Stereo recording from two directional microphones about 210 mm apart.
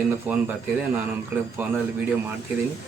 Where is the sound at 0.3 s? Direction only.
5° right (ahead or behind).